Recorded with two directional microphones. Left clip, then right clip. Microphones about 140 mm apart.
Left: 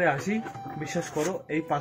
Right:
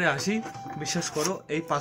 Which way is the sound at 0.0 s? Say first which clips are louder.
Even; 20° right (ahead or behind).